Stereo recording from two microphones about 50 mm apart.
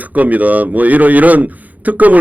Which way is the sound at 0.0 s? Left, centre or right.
Right.